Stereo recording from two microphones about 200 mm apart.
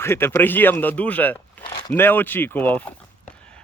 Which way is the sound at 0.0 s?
10° left (ahead or behind).